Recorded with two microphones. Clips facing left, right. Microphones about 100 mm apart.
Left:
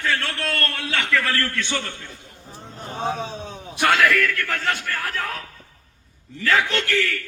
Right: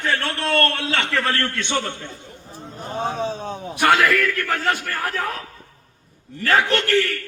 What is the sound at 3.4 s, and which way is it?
Speech, 50° right (ahead or behind).